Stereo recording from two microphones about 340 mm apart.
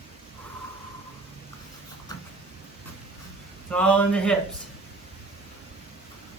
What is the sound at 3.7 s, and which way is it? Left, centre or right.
Speech, centre.